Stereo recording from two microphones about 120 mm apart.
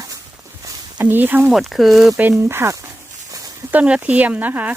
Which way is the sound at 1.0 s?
15° right (ahead or behind).